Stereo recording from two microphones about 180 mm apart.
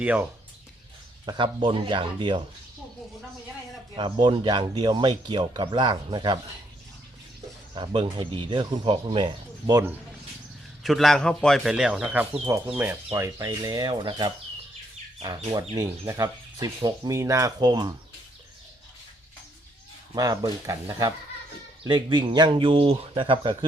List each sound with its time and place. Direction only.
0.0 s speech: 10° right (ahead or behind)
1.2 s speech: 25° right (ahead or behind)
3.9 s speech: 25° right (ahead or behind)
7.8 s speech: 25° right (ahead or behind)
10.8 s a man's voice: centre (ahead or behind); by 14.3 s 25° right (ahead or behind)
15.7 s speech: 20° right (ahead or behind)
20.1 s speech: 20° right (ahead or behind)